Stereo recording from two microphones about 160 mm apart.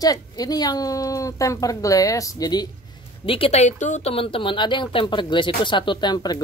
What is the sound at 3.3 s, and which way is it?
Speech, 35° left (ahead or behind).